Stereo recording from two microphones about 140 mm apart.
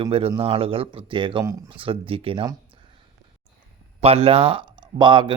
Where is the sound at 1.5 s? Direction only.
25° right (ahead or behind).